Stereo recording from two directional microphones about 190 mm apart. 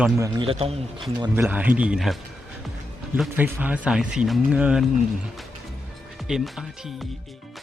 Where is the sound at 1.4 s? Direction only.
10° right (ahead or behind).